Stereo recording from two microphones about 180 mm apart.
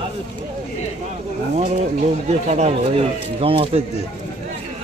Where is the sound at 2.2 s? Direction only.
35° right (ahead or behind).